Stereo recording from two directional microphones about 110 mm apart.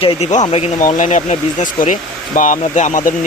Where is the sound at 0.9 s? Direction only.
90° left.